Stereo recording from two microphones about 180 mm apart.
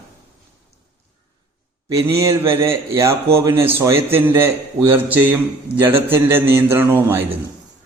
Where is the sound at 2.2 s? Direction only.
15° right (ahead or behind).